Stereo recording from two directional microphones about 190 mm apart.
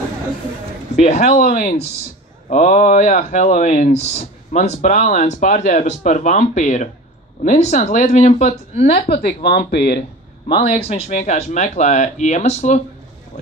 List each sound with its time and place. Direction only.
0.9 s speech: 35° left (ahead or behind)
9.1 s speech: 60° left (ahead or behind)
10.8 s speech: 35° left (ahead or behind)